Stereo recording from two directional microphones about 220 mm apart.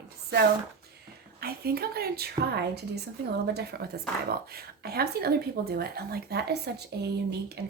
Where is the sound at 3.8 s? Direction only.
45° right (ahead or behind).